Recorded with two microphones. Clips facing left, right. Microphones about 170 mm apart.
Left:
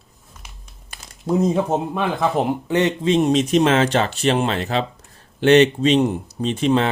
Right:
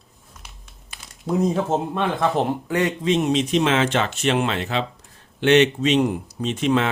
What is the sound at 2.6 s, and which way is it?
Speech, 25° left (ahead or behind).